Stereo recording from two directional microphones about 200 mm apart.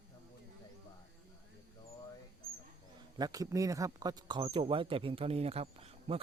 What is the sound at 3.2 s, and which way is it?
Speech, 20° right (ahead or behind).